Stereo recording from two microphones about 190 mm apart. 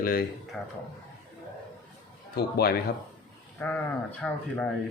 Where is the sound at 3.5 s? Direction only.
10° left (ahead or behind).